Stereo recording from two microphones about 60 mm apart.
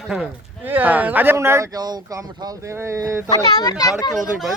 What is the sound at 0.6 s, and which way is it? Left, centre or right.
Speech, right.